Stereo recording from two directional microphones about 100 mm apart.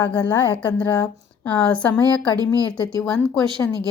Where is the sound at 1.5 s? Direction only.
10° left (ahead or behind).